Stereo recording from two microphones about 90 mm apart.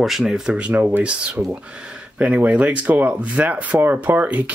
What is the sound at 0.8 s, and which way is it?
Speech, 20° right (ahead or behind).